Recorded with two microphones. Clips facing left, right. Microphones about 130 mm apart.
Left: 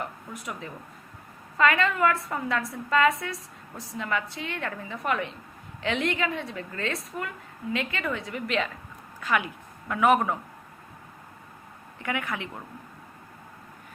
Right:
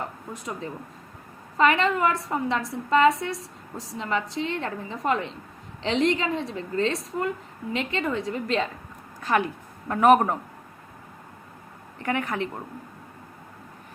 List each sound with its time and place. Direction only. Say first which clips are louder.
1.5 s a woman's voice: right 2 dB; 25° right (ahead or behind)
11.9 s a woman's voice: right 4 dB; 35° right (ahead or behind)